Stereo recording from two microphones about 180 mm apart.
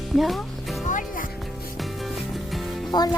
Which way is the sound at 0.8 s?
45° left (ahead or behind).